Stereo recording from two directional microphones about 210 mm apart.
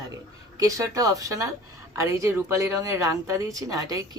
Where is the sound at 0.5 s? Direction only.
15° right (ahead or behind).